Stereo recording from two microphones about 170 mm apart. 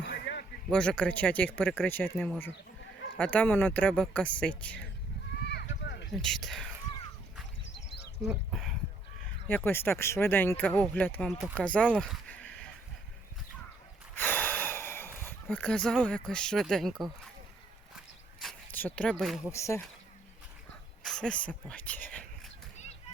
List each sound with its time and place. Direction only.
0.0 s a sound: 75° left (ahead or behind)
0.7 s speech: 5° left (ahead or behind)
5.4 s a sound: 80° left
6.1 s speech: centre (ahead or behind)
8.2 s speech: 5° right (ahead or behind)
9.5 s speech: 10° left (ahead or behind)
14.2 s a sound: 10° left (ahead or behind)
18.7 s speech: 10° left (ahead or behind)
19.5 s speech: 15° left (ahead or behind)
21.0 s speech: 5° left (ahead or behind)